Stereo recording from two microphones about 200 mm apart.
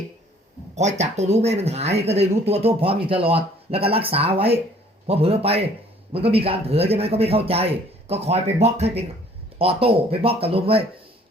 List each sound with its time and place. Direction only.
0.8 s a man's voice: 35° right (ahead or behind)